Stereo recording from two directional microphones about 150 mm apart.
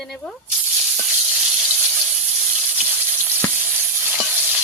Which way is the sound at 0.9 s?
5° right (ahead or behind).